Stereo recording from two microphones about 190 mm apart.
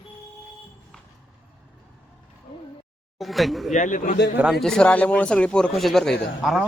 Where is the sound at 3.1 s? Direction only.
Centre (ahead or behind).